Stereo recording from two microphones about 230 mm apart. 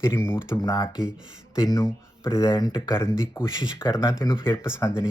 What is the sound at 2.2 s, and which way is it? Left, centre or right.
Speech, centre.